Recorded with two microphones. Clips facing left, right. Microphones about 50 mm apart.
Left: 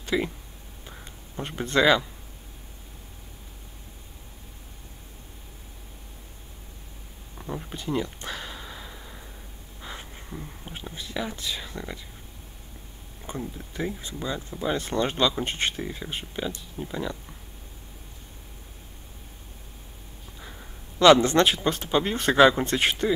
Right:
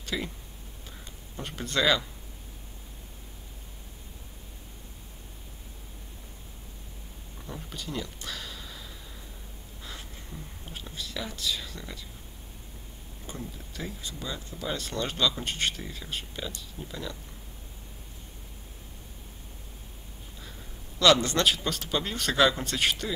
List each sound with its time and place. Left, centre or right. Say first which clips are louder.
0.0 s speech: left 7 dB; left
0.8 s a sound: left 4 dB; left
7.3 s a sound: left 5 dB; left
9.8 s speech: left 4 dB; left
13.3 s speech: left 6 dB; left
21.0 s speech: left 6 dB; left